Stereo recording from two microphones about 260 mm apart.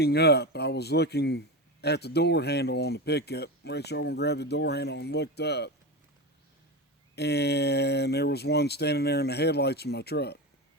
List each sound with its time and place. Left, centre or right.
0.0 s a man's voice: left
7.2 s a man's voice: left